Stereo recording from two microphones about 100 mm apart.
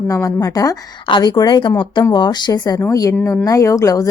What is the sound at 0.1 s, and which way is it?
Speech, 35° left (ahead or behind).